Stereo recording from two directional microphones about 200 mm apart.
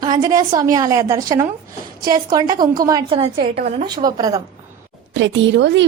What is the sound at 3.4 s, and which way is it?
Speech, 40° right (ahead or behind).